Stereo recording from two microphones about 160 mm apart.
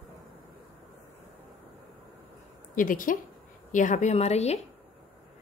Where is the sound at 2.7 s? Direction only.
55° left (ahead or behind).